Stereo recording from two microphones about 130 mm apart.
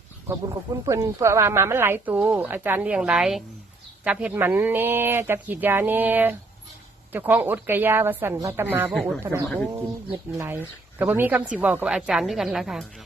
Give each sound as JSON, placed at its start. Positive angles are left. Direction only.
{"t": 0.3, "sound": "speech", "side_deg": -25}